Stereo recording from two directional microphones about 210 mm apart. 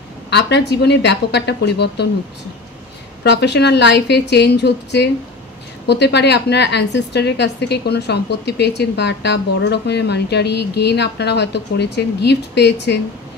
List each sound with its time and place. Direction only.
0.3 s a woman's voice: 55° left (ahead or behind)
3.3 s a woman's voice: 55° left (ahead or behind)